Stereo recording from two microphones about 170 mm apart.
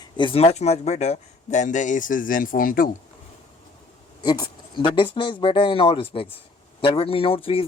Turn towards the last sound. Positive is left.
turn(degrees=35)  # may be behind; listen again after turning